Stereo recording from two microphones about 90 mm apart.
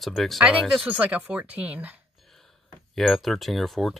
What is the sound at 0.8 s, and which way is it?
Speech, 15° right (ahead or behind).